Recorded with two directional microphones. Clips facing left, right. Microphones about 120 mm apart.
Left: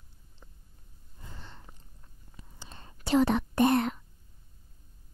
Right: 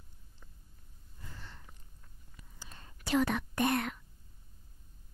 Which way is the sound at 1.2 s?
25° left (ahead or behind).